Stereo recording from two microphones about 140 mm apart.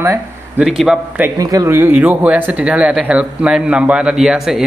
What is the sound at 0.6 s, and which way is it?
Speech, 5° right (ahead or behind).